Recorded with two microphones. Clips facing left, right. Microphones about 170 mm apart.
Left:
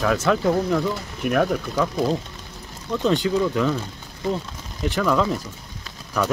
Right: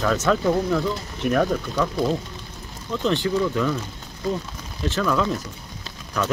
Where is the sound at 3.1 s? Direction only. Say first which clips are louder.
Left 1 dB; 15° left (ahead or behind).